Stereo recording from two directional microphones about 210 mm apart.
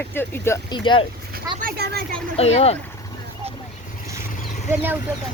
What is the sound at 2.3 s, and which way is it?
Speech, 30° left (ahead or behind).